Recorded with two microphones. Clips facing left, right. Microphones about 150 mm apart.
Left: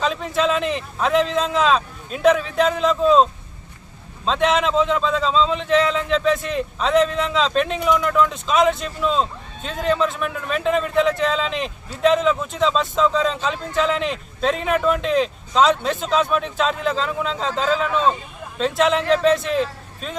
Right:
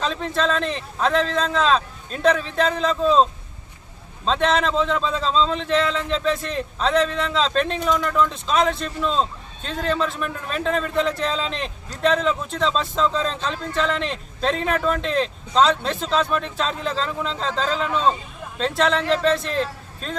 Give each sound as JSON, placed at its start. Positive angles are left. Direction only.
{"t": 0.0, "sound": "a man's voice", "side_deg": 5}
{"t": 4.3, "sound": "a man's voice", "side_deg": 0}